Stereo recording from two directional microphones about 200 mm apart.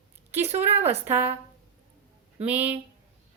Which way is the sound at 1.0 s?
10° right (ahead or behind).